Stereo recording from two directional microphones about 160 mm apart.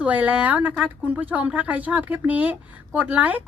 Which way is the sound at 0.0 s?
10° right (ahead or behind).